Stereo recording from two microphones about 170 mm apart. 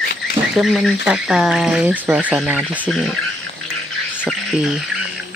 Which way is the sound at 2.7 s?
5° left (ahead or behind).